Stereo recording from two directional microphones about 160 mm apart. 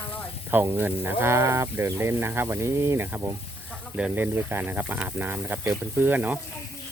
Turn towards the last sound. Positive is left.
turn(degrees=-10)  # may be behind; listen again after turning